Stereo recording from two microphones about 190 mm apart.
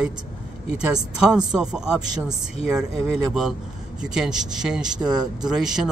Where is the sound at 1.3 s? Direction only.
5° right (ahead or behind).